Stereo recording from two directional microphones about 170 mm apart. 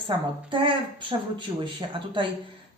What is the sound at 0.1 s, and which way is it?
Speech, 25° right (ahead or behind).